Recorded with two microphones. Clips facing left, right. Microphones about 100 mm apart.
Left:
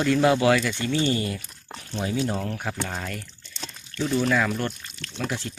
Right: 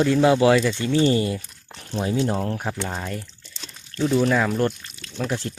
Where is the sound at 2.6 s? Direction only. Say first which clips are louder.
Right 2 dB; 20° right (ahead or behind).